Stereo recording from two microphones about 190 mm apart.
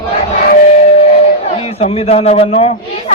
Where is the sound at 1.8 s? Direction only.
30° left (ahead or behind).